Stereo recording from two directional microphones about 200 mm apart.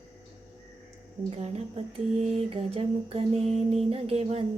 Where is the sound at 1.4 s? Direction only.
30° right (ahead or behind).